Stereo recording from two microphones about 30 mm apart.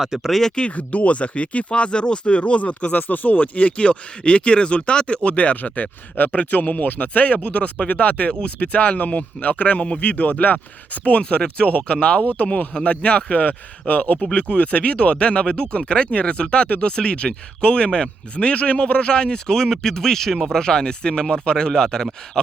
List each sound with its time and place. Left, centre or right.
0.2 s speech: centre
0.8 s speech: left
2.9 s speech: left
7.0 s speech: left
11.2 s speech: left
13.4 s speech: left; by 20.6 s centre
20.6 s speech: left
21.7 s speech: centre